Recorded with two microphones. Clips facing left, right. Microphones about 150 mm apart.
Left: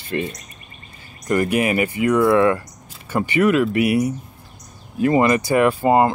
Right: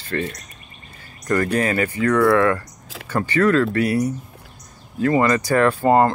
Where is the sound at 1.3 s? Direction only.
15° left (ahead or behind).